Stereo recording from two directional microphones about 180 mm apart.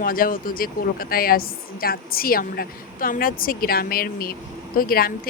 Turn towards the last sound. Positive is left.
turn(degrees=55)  # may be behind; listen again after turning